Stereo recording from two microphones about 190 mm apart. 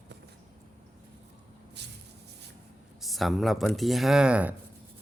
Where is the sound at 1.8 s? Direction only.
65° right (ahead or behind).